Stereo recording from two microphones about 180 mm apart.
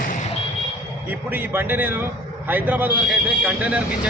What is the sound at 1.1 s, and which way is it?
A man's voice, 10° right (ahead or behind).